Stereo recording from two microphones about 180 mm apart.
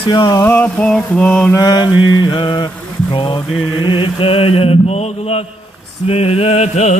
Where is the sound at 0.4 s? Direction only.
10° left (ahead or behind).